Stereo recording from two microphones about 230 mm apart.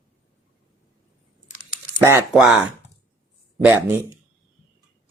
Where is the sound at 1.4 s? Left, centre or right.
Left.